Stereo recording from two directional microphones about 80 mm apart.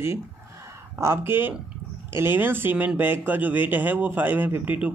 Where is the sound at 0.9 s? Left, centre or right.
Right.